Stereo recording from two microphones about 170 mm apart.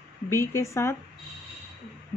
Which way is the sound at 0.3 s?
15° left (ahead or behind).